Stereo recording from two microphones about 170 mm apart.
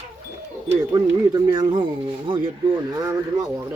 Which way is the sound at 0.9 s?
25° right (ahead or behind).